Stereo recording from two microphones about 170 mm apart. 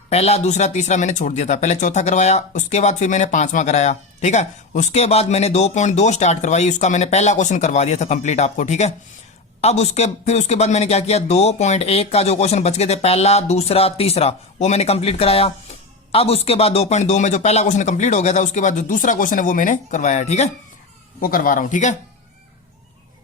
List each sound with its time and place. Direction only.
0.1 s speech: 40° left (ahead or behind)
21.2 s speech: 55° left (ahead or behind)